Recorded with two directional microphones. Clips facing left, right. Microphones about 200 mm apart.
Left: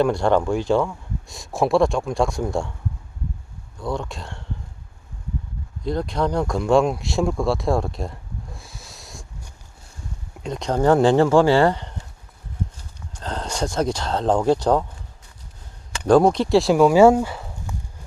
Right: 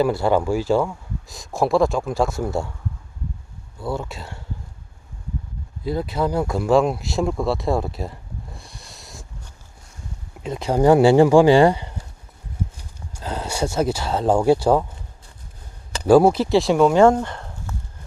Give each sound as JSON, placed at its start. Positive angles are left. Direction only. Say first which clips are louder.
{"t": 0.0, "sound": "speech", "louder": "even", "side_deg": -5}
{"t": 3.8, "sound": "speech", "louder": "even", "side_deg": -5}
{"t": 5.8, "sound": "speech", "louder": "even", "side_deg": -5}
{"t": 10.4, "sound": "speech", "louder": "right 2 dB", "side_deg": -5}
{"t": 16.0, "sound": "speech", "louder": "right 2 dB", "side_deg": -5}